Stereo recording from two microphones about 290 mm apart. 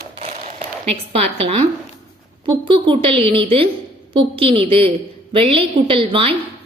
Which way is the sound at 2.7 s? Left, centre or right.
Centre.